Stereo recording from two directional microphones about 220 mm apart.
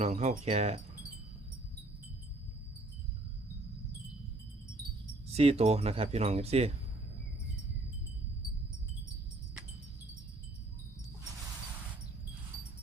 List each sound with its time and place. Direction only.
0.0 s speech: 30° right (ahead or behind)
5.3 s speech: 25° right (ahead or behind)